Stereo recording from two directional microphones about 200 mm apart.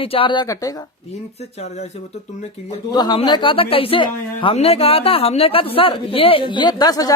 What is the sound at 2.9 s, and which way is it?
A woman's voice, 20° left (ahead or behind).